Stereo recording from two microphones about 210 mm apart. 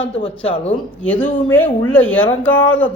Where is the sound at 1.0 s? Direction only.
5° left (ahead or behind).